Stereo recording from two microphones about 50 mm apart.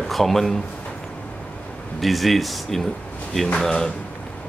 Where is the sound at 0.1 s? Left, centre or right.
Centre.